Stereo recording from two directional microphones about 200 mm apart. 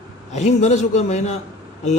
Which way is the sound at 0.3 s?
35° left (ahead or behind).